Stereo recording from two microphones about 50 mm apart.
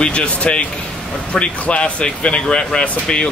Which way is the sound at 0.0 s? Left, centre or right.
Left.